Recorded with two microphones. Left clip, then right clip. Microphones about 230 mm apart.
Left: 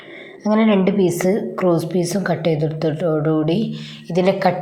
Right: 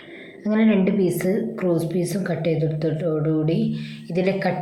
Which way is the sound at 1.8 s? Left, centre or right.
Centre.